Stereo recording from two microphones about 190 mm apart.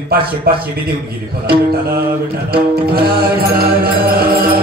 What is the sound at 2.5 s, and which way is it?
Music, 55° right (ahead or behind).